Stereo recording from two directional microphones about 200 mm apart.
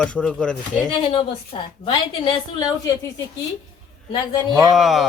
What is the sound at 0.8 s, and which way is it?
A woman's voice, 25° left (ahead or behind).